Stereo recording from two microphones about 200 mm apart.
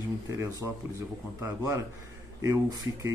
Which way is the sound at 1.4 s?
15° right (ahead or behind).